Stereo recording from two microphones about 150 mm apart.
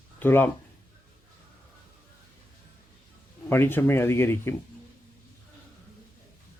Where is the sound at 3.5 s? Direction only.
15° left (ahead or behind).